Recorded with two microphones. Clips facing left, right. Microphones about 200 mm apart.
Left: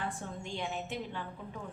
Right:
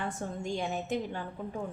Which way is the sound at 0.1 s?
40° right (ahead or behind).